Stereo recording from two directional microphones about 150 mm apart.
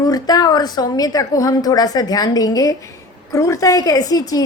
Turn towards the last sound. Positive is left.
turn(degrees=25)  # may be behind; listen again after turning